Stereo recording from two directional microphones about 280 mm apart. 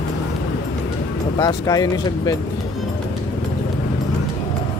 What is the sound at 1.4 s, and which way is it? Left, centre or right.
Speech, centre.